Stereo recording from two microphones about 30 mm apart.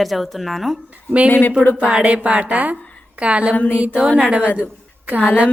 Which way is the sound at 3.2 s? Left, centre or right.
Right.